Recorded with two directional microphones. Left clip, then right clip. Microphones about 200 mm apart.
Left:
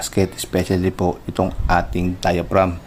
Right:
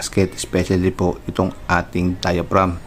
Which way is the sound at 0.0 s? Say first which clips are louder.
Right 1 dB; centre (ahead or behind).